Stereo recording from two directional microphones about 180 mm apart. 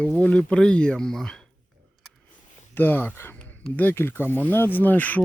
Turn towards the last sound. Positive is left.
turn(degrees=10)  # may be behind; listen again after turning